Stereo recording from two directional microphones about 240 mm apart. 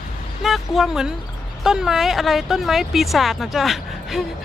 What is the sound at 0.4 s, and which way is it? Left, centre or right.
Speech, centre.